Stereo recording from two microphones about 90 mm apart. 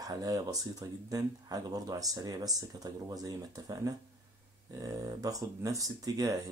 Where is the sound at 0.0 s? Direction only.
45° right (ahead or behind).